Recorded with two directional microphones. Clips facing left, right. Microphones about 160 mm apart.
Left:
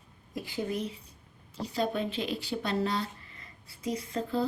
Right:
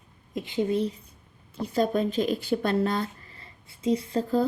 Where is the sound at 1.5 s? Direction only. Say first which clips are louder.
Right 6 dB; 50° right (ahead or behind).